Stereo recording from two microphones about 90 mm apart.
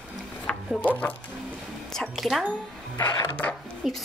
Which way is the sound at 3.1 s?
40° left (ahead or behind).